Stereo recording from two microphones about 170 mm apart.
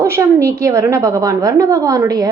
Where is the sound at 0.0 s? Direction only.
15° right (ahead or behind).